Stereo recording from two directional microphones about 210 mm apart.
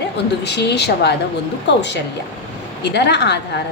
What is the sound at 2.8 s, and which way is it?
Speech, 55° left (ahead or behind).